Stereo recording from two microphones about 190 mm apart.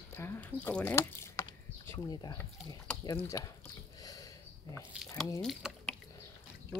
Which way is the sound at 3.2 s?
15° left (ahead or behind).